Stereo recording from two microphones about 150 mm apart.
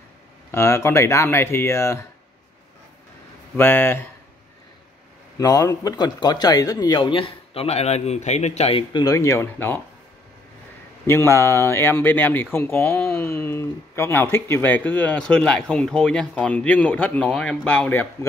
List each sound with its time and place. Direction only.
0.5 s speech: 20° left (ahead or behind)
3.5 s speech: 15° left (ahead or behind)
5.4 s speech: 25° left (ahead or behind); by 8.8 s 45° left (ahead or behind)
8.9 s speech: 25° left (ahead or behind)
11.1 s speech: 15° left (ahead or behind)